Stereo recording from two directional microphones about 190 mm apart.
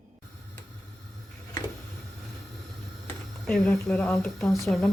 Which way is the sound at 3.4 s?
Centre (ahead or behind).